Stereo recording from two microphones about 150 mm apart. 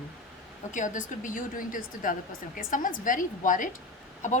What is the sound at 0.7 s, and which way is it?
A woman's voice, 60° left (ahead or behind).